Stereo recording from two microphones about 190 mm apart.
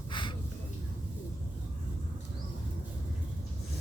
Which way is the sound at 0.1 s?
25° left (ahead or behind).